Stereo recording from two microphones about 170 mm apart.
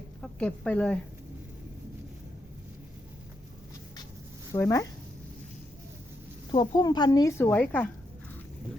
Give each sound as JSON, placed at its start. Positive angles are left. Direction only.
{"t": 0.2, "sound": "a woman's voice", "side_deg": 5}
{"t": 4.5, "sound": "a woman's voice", "side_deg": 20}
{"t": 6.5, "sound": "a woman's voice", "side_deg": 25}